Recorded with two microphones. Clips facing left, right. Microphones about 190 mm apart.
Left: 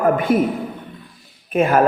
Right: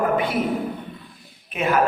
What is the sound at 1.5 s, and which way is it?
Speech, 50° left (ahead or behind).